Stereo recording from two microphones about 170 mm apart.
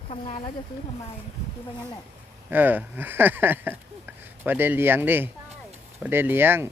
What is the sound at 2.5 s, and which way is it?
Speech, 10° right (ahead or behind).